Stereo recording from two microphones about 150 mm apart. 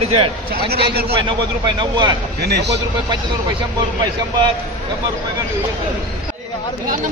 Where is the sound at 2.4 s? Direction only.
90° right.